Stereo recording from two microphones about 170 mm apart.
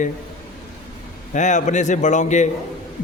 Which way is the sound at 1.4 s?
45° left (ahead or behind).